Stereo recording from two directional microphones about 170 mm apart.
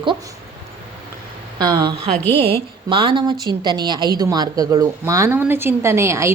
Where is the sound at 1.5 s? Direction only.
25° right (ahead or behind).